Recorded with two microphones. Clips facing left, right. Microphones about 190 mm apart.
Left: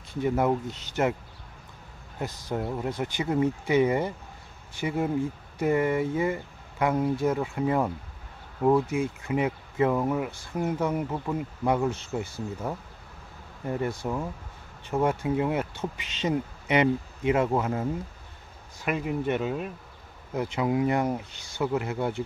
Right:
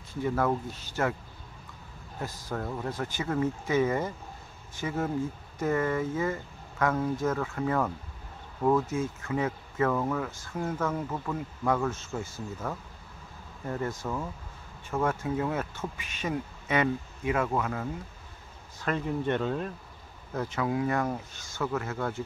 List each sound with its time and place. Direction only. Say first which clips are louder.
0.2 s speech: left 3 dB; 20° left (ahead or behind)
2.5 s speech: left 4 dB; 20° left (ahead or behind)
14.0 s speech: left 3 dB; 15° left (ahead or behind)
18.8 s speech: left 2 dB; 10° left (ahead or behind)